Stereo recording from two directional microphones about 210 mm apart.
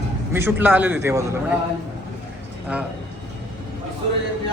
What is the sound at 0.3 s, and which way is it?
A man's voice, 10° right (ahead or behind).